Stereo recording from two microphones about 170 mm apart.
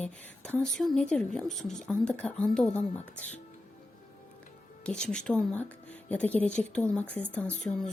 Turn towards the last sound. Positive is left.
turn(degrees=5)  # may be behind; listen again after turning